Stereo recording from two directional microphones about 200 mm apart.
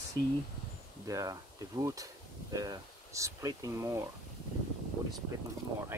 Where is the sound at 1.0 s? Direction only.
15° right (ahead or behind).